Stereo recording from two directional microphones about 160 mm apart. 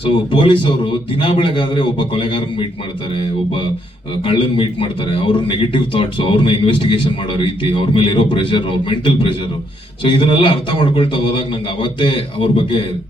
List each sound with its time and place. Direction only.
0.0 s a man's voice: 35° left (ahead or behind)
4.2 s a man's voice: 35° left (ahead or behind)